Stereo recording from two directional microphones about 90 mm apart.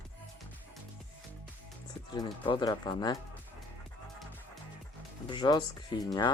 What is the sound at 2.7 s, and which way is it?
Speech, 50° left (ahead or behind).